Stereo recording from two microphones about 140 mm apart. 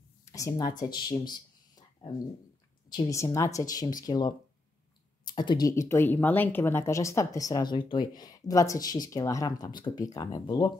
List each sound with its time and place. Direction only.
0.2 s speech: 25° left (ahead or behind)
1.8 s a sound: 30° left (ahead or behind)
3.1 s speech: 20° left (ahead or behind)